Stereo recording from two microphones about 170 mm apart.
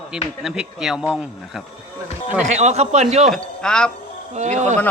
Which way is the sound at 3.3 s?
5° left (ahead or behind).